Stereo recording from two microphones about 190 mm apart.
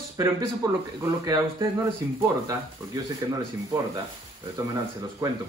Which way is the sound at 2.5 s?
20° right (ahead or behind).